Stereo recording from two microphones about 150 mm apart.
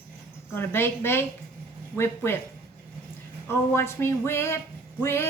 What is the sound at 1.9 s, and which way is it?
Speech, 10° right (ahead or behind).